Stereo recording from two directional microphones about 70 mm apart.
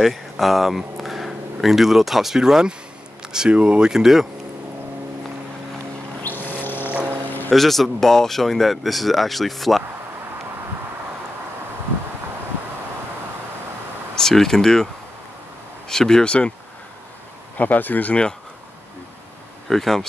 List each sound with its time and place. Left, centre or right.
0.0 s speech: centre
6.2 s vehicle: left
7.5 s speech: centre
14.1 s speech: centre
15.9 s speech: centre
17.6 s speech: left
19.7 s speech: centre